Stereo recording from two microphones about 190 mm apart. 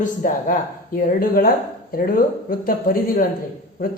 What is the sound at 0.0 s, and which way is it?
Speech, 45° left (ahead or behind).